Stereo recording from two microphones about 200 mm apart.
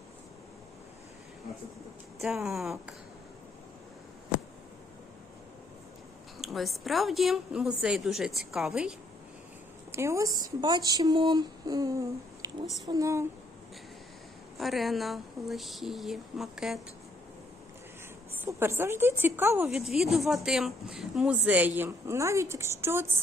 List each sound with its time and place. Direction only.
2.2 s a woman's voice: centre (ahead or behind)
6.4 s a woman's voice: centre (ahead or behind)
9.9 s a woman's voice: 15° right (ahead or behind)
14.6 s a woman's voice: centre (ahead or behind)
18.4 s a woman's voice: 10° right (ahead or behind)